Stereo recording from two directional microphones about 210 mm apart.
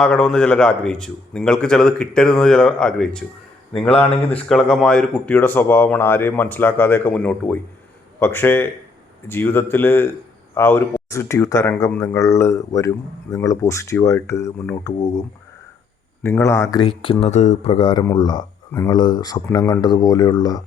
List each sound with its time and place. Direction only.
0.0 s a man's voice: 5° left (ahead or behind)
16.2 s speech: 15° left (ahead or behind)
17.0 s speech: 25° left (ahead or behind)
18.0 s speech: 15° left (ahead or behind)